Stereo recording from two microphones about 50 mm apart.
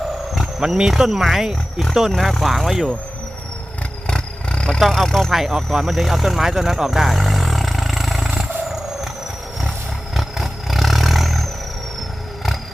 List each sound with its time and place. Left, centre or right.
0.6 s speech: centre
4.0 s vehicle: centre
4.8 s speech: centre
5.3 s speech: centre
5.7 s vehicle: centre
10.2 s vehicle: centre